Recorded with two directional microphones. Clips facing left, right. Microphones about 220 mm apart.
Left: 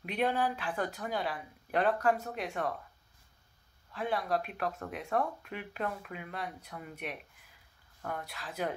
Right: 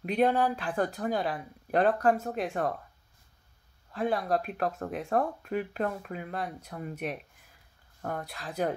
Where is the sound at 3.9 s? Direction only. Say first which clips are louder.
Right 4 dB; 40° right (ahead or behind).